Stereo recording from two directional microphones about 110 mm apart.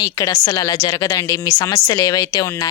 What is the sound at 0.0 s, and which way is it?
A woman's voice, 30° left (ahead or behind).